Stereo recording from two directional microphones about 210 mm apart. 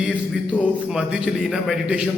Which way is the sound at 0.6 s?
5° right (ahead or behind).